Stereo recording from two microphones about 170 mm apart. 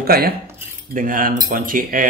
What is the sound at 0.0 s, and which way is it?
Speech, 65° right (ahead or behind).